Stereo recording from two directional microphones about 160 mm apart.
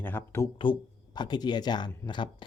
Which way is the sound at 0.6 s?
30° left (ahead or behind).